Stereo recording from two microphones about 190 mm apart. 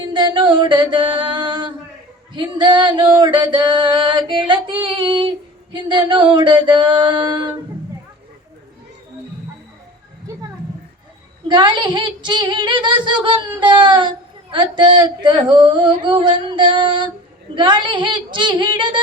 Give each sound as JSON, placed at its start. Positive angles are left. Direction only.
{"t": 0.0, "sound": "a sound", "side_deg": -25}
{"t": 2.3, "sound": "female singing", "side_deg": -25}
{"t": 11.4, "sound": "female singing", "side_deg": -25}